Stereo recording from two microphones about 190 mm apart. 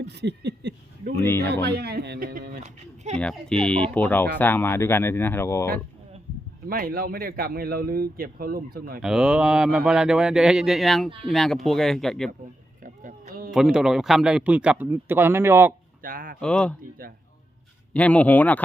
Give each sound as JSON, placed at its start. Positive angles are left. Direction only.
{"t": 0.0, "sound": "a sound", "side_deg": -65}
{"t": 1.2, "sound": "speech", "side_deg": 10}
{"t": 1.6, "sound": "a man's voice", "side_deg": -55}
{"t": 2.6, "sound": "a sound", "side_deg": -35}
{"t": 3.2, "sound": "speech", "side_deg": 5}
{"t": 6.7, "sound": "a man's voice", "side_deg": -50}
{"t": 9.0, "sound": "speech", "side_deg": -5}
{"t": 12.8, "sound": "a sound", "side_deg": -45}
{"t": 13.5, "sound": "a man's voice", "side_deg": -5}
{"t": 16.0, "sound": "speech", "side_deg": -45}
{"t": 16.4, "sound": "speech", "side_deg": 5}
{"t": 17.9, "sound": "speech", "side_deg": 5}